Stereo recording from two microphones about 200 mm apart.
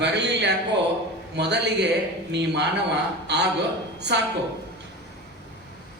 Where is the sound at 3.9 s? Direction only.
60° right (ahead or behind).